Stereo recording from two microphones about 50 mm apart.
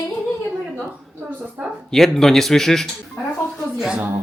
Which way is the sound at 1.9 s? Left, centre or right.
Centre.